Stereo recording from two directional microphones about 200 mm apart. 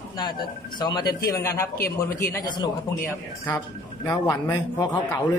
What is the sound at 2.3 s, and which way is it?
Speech, 20° left (ahead or behind).